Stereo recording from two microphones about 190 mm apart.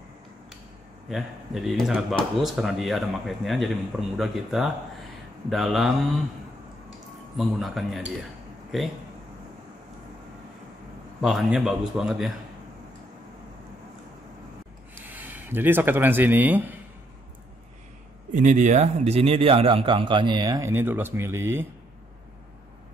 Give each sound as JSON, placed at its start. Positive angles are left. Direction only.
{"t": 1.0, "sound": "speech", "side_deg": 0}
{"t": 7.3, "sound": "speech", "side_deg": 0}
{"t": 11.1, "sound": "speech", "side_deg": 0}
{"t": 15.0, "sound": "speech", "side_deg": -10}
{"t": 18.3, "sound": "speech", "side_deg": -40}